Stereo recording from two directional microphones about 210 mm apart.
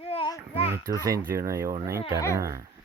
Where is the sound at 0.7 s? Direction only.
15° right (ahead or behind).